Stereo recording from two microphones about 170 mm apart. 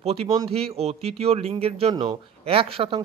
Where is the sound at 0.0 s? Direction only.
35° right (ahead or behind).